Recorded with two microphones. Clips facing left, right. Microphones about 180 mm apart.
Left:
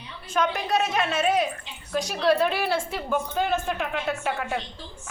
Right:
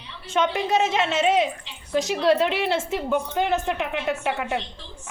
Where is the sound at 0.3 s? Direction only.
25° right (ahead or behind).